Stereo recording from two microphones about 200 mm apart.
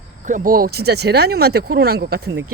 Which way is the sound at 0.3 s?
40° right (ahead or behind).